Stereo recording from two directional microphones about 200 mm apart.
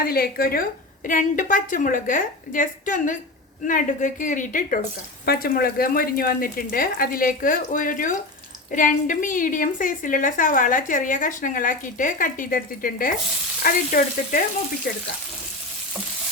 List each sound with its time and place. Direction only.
0.0 s a woman's voice: 50° left (ahead or behind)